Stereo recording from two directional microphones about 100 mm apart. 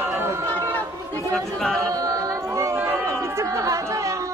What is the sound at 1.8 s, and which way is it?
Chatter, 35° right (ahead or behind).